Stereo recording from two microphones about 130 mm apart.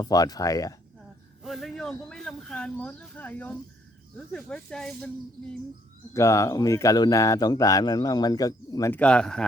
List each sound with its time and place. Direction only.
0.0 s speech: 30° left (ahead or behind)
1.5 s speech: centre (ahead or behind)
6.1 s speech: 25° left (ahead or behind)
8.9 s speech: 10° left (ahead or behind)